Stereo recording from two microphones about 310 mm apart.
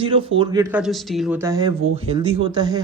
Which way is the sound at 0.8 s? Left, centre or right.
Centre.